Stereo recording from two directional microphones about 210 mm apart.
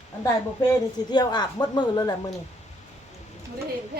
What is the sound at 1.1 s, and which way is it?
Speech, 20° left (ahead or behind).